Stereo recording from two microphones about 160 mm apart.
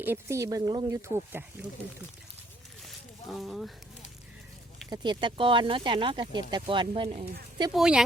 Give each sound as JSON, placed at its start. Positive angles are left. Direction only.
{"t": 0.0, "sound": "speech", "side_deg": -15}
{"t": 3.3, "sound": "speech", "side_deg": 0}
{"t": 4.9, "sound": "speech", "side_deg": -30}
{"t": 7.7, "sound": "speech", "side_deg": -5}